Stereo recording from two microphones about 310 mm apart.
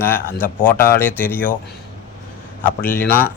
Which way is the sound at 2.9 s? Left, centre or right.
Centre.